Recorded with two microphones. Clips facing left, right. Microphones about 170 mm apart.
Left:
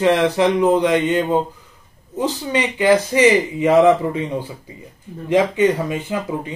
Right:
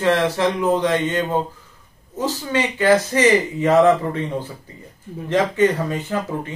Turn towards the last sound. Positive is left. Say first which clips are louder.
# left 1 dB
turn(degrees=10)  # may be behind; listen again after turning